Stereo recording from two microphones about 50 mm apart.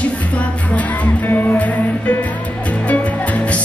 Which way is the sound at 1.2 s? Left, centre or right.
Left.